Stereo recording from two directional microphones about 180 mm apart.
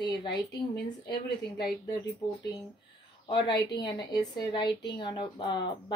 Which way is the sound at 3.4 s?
25° left (ahead or behind).